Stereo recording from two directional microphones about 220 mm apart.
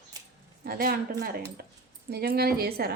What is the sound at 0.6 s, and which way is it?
A woman's voice, 40° right (ahead or behind).